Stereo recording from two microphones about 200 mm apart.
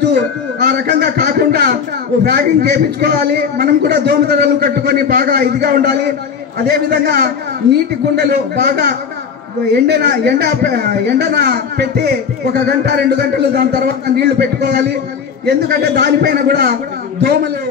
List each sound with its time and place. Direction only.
0.0 s a man's voice: 55° right (ahead or behind)